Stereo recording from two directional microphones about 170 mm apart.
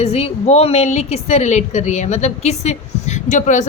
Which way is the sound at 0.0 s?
40° left (ahead or behind).